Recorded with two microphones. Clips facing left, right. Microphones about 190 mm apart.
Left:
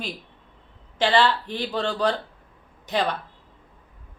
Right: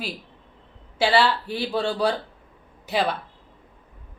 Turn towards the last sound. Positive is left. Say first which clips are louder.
# right 1 dB
turn(degrees=-5)  # may be behind; listen again after turning